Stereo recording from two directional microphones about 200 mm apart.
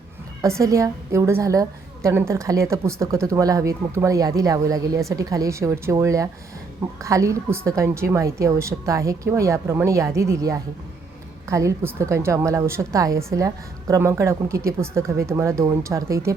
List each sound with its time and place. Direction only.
0.6 s a woman's voice: 15° right (ahead or behind)